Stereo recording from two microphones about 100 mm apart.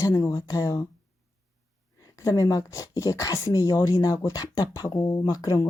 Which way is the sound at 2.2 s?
35° left (ahead or behind).